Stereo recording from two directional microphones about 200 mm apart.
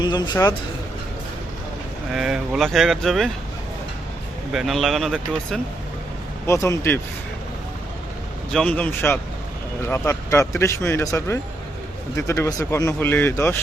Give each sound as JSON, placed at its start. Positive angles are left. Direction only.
{"t": 0.0, "sound": "speech", "side_deg": 20}
{"t": 2.1, "sound": "speech", "side_deg": 0}
{"t": 4.5, "sound": "speech", "side_deg": 0}
{"t": 6.5, "sound": "speech", "side_deg": 15}
{"t": 8.5, "sound": "speech", "side_deg": 5}